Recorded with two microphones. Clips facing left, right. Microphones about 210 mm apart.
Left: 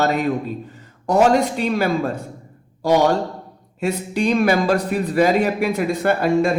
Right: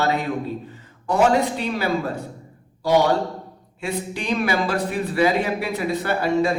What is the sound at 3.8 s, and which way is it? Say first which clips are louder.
A man's voice: left 7 dB; 45° left (ahead or behind).